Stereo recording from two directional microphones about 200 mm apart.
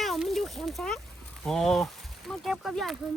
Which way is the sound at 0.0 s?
Centre (ahead or behind).